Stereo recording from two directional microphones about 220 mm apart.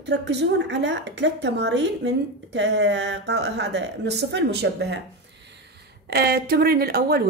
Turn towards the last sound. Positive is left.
turn(degrees=-45)  # may be behind; listen again after turning